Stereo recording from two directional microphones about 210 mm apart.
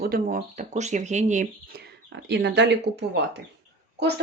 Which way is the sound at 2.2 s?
55° right (ahead or behind).